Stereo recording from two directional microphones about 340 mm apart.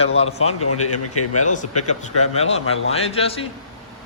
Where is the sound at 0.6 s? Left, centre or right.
Left.